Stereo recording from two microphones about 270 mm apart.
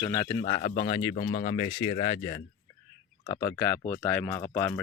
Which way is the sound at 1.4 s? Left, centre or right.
Left.